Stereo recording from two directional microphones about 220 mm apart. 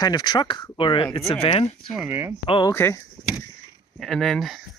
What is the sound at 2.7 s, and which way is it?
Speech, 10° left (ahead or behind).